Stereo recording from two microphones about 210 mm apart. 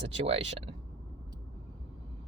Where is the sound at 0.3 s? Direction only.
25° right (ahead or behind).